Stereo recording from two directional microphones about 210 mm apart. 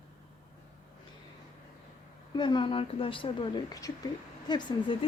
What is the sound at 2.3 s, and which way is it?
A woman's voice, 20° left (ahead or behind).